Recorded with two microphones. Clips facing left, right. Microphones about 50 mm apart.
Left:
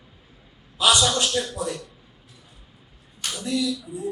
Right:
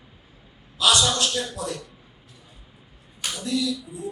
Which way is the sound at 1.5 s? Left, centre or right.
Centre.